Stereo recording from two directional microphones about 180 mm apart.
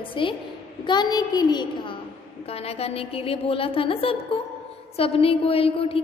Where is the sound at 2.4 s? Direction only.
35° left (ahead or behind).